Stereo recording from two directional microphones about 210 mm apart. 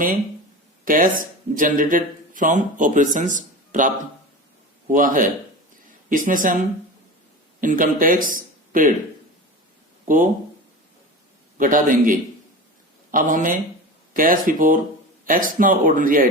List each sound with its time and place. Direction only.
0.9 s speech: 40° right (ahead or behind)
8.3 s a sound: 40° right (ahead or behind)
10.1 s speech: 40° right (ahead or behind)
11.5 s speech: 40° right (ahead or behind)